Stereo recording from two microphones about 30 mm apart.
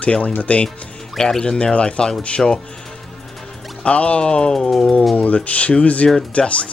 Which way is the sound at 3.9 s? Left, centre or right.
Left.